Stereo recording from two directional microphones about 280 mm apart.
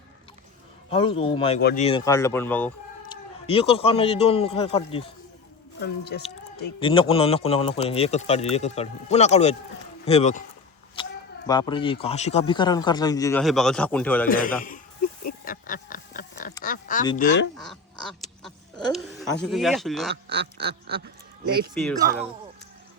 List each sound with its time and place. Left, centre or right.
0.9 s speech: centre
3.4 s speech: centre
5.8 s speech: left
6.7 s speech: centre
11.0 s a sound: centre
11.4 s a man's voice: centre
13.4 s a man's voice: centre
14.3 s speech: left
14.6 s a sound: left
16.6 s oink: left
17.2 s speech: left
17.6 s duck: centre
19.5 s a man's voice: centre
20.2 s duck: right